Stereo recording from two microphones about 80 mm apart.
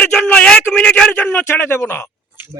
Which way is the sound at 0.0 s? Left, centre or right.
Centre.